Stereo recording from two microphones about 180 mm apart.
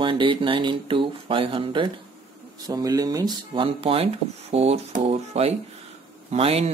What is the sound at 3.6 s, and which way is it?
Speech, 30° right (ahead or behind).